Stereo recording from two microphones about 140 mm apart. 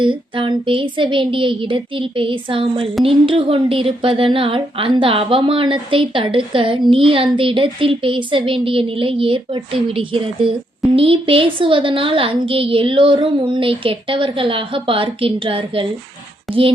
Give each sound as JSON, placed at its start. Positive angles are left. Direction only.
{"t": 0.0, "sound": "a woman's voice", "side_deg": -35}
{"t": 16.5, "sound": "speech", "side_deg": 0}